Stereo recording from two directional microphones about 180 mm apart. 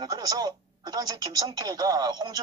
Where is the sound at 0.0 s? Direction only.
20° right (ahead or behind).